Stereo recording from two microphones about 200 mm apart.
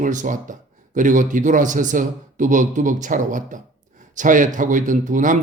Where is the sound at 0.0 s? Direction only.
40° right (ahead or behind).